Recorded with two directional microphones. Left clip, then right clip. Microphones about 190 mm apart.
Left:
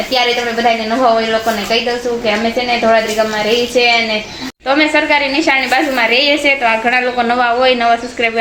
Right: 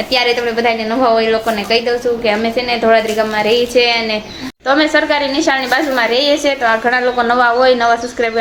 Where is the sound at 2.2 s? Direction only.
20° right (ahead or behind).